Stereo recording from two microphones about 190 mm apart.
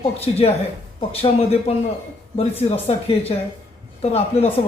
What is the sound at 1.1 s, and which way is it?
Speech, 30° left (ahead or behind).